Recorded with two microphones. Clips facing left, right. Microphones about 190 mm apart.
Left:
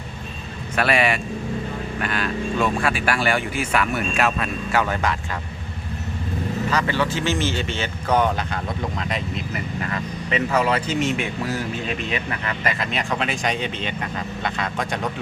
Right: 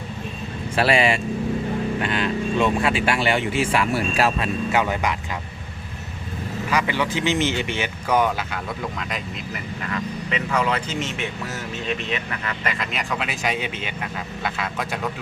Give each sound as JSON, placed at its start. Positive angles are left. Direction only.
{"t": 0.8, "sound": "speech", "side_deg": -30}
{"t": 4.7, "sound": "speech", "side_deg": -15}
{"t": 6.7, "sound": "speech", "side_deg": -15}
{"t": 10.3, "sound": "speech", "side_deg": 35}
{"t": 12.9, "sound": "speech", "side_deg": -5}